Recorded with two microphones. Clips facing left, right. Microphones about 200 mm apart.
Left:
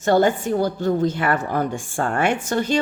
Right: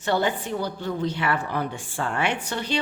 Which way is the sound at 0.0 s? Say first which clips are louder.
Left 7 dB; 45° left (ahead or behind).